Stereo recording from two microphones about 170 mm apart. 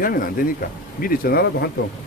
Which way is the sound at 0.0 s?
55° left (ahead or behind).